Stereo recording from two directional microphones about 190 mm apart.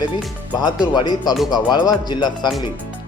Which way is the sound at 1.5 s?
20° left (ahead or behind).